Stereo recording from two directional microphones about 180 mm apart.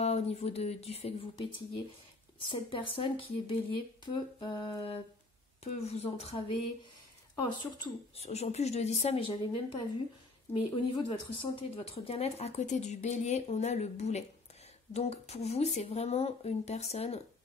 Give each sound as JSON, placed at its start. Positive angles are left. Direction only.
{"t": 0.0, "sound": "speech", "side_deg": 35}
{"t": 7.4, "sound": "speech", "side_deg": 25}
{"t": 8.3, "sound": "speech", "side_deg": 35}